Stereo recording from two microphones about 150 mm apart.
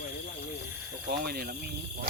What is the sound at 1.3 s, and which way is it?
Speech, 90° right.